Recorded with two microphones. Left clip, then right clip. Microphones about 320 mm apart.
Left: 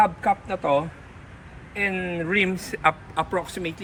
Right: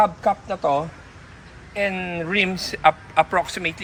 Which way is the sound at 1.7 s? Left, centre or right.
Centre.